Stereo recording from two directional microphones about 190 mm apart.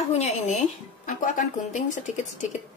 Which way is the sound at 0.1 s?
35° left (ahead or behind).